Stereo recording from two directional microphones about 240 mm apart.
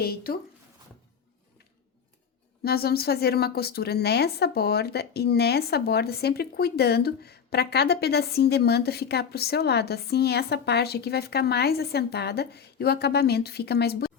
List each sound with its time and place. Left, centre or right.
0.0 s speech: left
2.6 s speech: left